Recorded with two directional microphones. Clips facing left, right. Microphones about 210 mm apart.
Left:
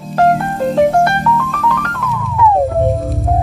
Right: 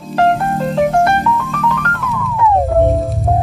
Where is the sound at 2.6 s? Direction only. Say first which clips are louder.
Right 1 dB; centre (ahead or behind).